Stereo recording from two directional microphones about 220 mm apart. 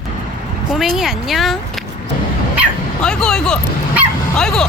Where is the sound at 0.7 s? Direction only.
Centre (ahead or behind).